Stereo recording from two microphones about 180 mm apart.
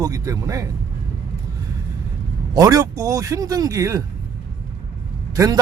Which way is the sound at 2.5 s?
20° right (ahead or behind).